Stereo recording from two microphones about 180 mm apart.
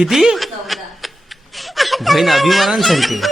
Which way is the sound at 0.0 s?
Centre (ahead or behind).